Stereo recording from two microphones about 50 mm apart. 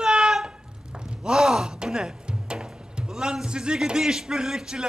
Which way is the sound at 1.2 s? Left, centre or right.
Centre.